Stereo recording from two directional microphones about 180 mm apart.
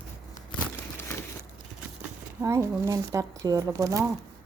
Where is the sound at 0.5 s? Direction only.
15° left (ahead or behind).